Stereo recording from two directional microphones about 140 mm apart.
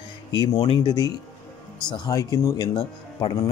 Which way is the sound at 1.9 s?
25° left (ahead or behind).